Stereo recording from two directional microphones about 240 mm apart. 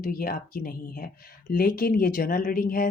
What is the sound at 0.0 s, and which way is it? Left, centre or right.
A woman's voice, left.